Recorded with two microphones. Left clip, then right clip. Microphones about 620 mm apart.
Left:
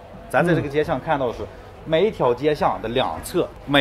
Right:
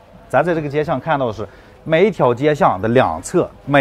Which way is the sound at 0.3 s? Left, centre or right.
Right.